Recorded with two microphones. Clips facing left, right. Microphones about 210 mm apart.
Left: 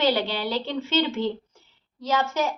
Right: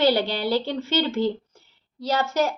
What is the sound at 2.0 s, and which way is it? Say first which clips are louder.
Speech: right 2 dB; 35° right (ahead or behind).